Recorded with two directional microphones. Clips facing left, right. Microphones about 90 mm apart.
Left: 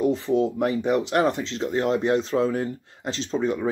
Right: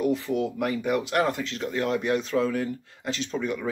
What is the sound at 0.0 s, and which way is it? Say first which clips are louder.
Speech: left 4 dB; 25° left (ahead or behind).